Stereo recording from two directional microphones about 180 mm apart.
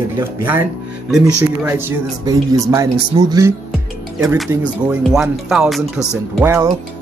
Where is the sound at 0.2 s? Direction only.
10° right (ahead or behind).